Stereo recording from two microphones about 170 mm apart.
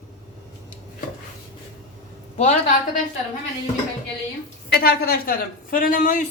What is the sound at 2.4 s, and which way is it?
Speech, 45° left (ahead or behind).